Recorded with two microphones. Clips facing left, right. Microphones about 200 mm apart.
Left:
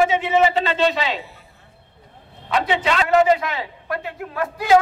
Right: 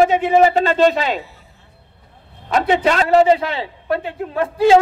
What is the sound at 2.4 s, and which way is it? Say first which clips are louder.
A man's voice: right 5 dB; 45° right (ahead or behind).